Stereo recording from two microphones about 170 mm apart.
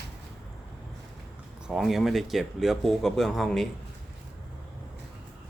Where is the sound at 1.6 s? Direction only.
Centre (ahead or behind).